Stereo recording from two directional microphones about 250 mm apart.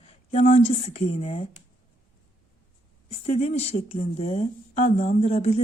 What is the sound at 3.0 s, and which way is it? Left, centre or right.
Speech, left.